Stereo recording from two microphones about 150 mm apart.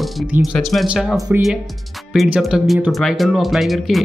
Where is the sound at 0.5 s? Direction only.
Centre (ahead or behind).